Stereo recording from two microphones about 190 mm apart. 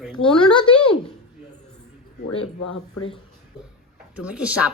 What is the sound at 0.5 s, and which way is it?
Speech, 25° left (ahead or behind).